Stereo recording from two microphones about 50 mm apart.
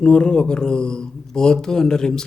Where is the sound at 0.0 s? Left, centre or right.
Centre.